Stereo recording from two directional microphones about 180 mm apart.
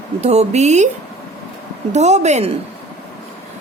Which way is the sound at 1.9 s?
40° right (ahead or behind).